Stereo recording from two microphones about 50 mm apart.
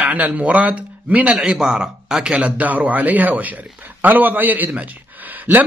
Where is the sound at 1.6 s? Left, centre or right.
Centre.